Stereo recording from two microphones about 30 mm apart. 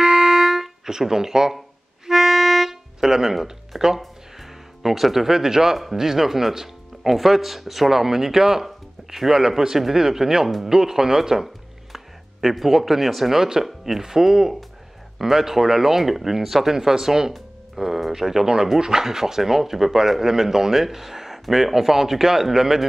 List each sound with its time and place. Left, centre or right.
0.0 s music: centre
0.8 s speech: centre
2.0 s music: centre
2.7 s speech: centre
4.0 s music: centre
5.9 s speech: centre
11.4 s speech: centre